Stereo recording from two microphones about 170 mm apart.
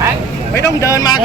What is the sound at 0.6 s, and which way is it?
Speech, 20° left (ahead or behind).